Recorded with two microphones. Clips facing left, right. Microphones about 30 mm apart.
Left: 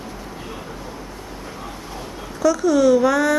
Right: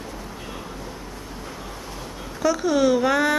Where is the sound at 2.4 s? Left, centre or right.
Right.